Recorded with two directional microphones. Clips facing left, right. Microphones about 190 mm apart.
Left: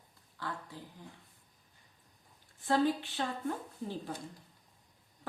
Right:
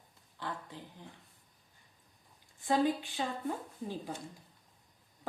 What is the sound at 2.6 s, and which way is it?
Speech, 15° right (ahead or behind).